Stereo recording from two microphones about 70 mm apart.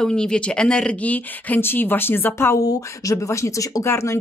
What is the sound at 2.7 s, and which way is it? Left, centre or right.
Speech, left.